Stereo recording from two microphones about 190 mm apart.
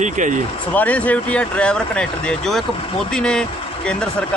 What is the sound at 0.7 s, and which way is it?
Speech, 10° left (ahead or behind).